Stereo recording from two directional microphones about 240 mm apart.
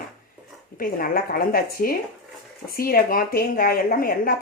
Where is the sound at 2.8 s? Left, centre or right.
Left.